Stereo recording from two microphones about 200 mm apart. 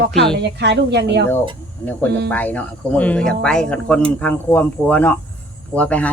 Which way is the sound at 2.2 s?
10° left (ahead or behind).